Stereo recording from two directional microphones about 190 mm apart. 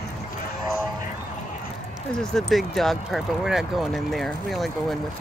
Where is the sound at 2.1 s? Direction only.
5° left (ahead or behind).